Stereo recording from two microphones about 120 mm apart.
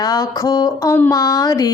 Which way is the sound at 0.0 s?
30° left (ahead or behind).